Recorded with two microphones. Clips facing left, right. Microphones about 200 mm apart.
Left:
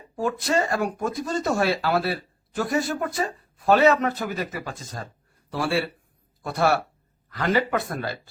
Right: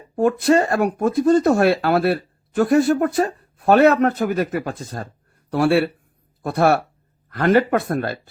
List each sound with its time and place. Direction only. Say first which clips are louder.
0.2 s speech: right 8 dB; 55° right (ahead or behind)